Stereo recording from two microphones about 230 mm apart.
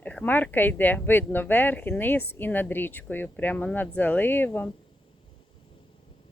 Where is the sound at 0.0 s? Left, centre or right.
Centre.